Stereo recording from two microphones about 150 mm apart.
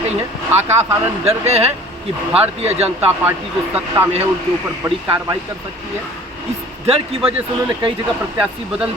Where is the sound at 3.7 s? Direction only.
15° right (ahead or behind).